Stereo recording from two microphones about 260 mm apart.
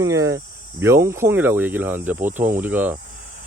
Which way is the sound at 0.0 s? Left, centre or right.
Centre.